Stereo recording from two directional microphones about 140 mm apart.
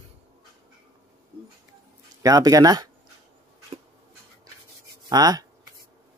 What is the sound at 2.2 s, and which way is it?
Speech, 25° right (ahead or behind).